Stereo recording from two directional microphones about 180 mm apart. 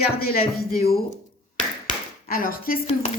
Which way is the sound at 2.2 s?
55° left (ahead or behind).